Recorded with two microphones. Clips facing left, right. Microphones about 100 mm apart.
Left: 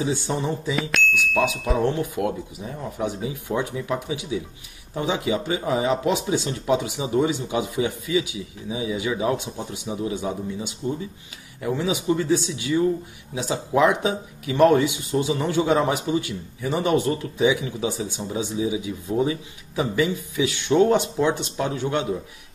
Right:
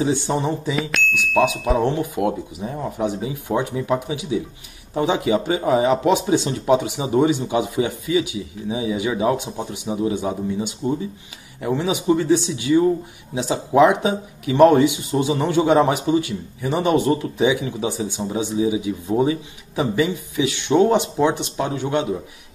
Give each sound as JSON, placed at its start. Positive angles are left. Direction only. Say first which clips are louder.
{"t": 0.0, "sound": "a man's voice", "louder": "right 4 dB", "side_deg": -30}
{"t": 0.7, "sound": "speech", "louder": "right 1 dB", "side_deg": 0}
{"t": 1.8, "sound": "a man's voice", "louder": "even", "side_deg": -25}